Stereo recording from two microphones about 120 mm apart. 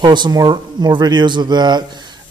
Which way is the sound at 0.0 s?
40° right (ahead or behind).